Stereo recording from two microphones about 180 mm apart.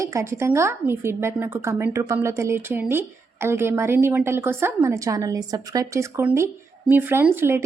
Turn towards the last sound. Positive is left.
turn(degrees=-15)  # may be behind; listen again after turning